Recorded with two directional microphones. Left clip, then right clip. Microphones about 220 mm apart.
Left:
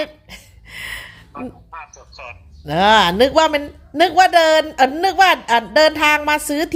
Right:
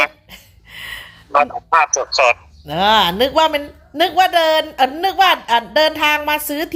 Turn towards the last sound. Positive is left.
turn(degrees=15)  # may be behind; listen again after turning